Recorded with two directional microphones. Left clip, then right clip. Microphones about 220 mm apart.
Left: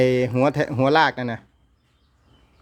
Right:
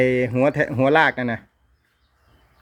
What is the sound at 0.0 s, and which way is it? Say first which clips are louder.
Speech: even; 20° left (ahead or behind).